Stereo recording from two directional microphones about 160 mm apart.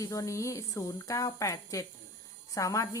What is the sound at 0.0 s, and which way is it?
A woman's voice, 20° left (ahead or behind).